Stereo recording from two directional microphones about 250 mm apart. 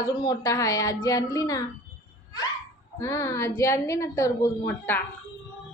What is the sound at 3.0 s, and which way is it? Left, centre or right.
A woman's voice, centre.